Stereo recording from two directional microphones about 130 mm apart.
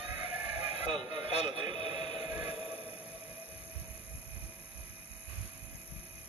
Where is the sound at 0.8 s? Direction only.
40° right (ahead or behind).